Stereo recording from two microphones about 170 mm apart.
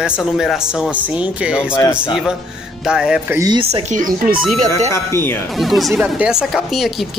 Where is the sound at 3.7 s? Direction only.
50° right (ahead or behind).